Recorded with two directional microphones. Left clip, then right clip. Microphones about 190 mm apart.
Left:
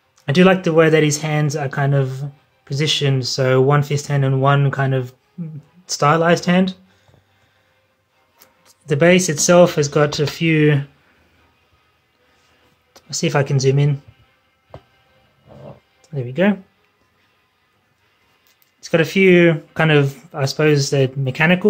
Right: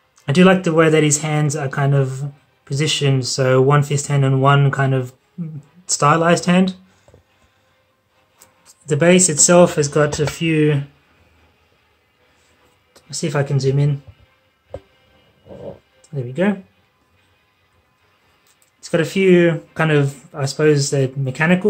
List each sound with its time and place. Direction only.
0.2 s speech: 10° left (ahead or behind)
8.4 s speech: 15° left (ahead or behind)
12.9 s speech: 20° left (ahead or behind)
16.0 s speech: 20° left (ahead or behind)
18.8 s speech: 20° left (ahead or behind)